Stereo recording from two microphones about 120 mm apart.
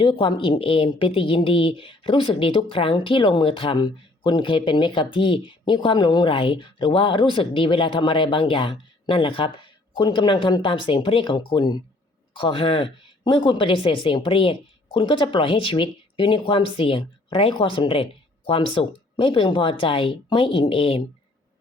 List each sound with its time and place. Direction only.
0.0 s a woman's voice: 45° left (ahead or behind)